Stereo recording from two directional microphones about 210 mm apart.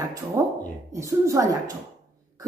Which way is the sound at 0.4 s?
15° right (ahead or behind).